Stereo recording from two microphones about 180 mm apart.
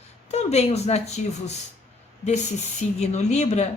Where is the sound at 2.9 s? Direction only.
40° left (ahead or behind).